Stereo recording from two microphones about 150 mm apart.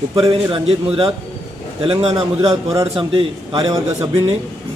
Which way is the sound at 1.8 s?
40° right (ahead or behind).